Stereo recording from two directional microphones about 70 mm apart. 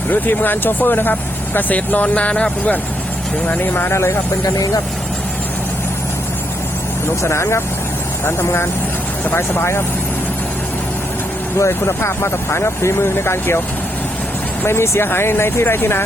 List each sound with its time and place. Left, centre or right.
0.1 s speech: left
4.4 s speech: left
7.2 s speech: left
11.5 s speech: left
14.6 s speech: left